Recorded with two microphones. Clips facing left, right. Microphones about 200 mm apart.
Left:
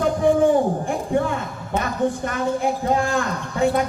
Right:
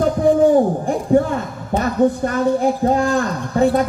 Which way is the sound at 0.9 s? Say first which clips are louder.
Right 6 dB; 40° right (ahead or behind).